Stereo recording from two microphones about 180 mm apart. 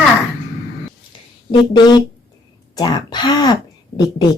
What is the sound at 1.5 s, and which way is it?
Speech, 25° left (ahead or behind).